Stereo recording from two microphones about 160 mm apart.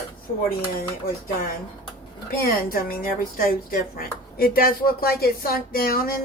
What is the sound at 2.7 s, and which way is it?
Speech, 65° left (ahead or behind).